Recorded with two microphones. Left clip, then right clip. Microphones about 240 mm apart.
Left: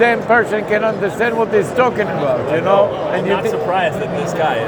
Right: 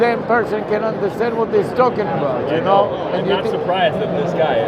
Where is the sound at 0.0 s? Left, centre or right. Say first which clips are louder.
Left 3 dB; left.